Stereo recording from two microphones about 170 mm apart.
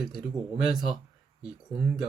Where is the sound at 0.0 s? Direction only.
5° right (ahead or behind).